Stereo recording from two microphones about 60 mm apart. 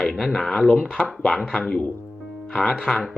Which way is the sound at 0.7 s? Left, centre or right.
Centre.